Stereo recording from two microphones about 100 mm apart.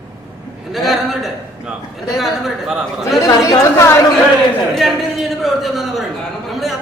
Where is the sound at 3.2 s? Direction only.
35° left (ahead or behind).